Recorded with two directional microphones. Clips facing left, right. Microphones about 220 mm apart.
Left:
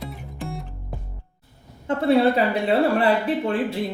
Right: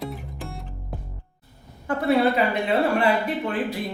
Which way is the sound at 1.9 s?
30° left (ahead or behind).